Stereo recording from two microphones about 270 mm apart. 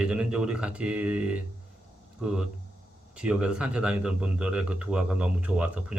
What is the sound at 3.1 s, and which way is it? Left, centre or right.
Speech, centre.